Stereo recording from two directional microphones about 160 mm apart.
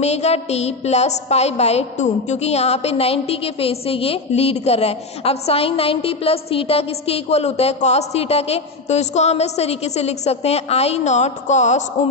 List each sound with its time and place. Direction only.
0.0 s a woman's voice: 45° left (ahead or behind)